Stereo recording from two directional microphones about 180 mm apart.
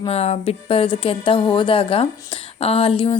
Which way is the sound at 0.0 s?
35° left (ahead or behind).